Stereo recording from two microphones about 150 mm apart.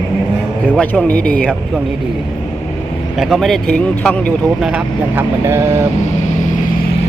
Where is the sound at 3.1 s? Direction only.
Centre (ahead or behind).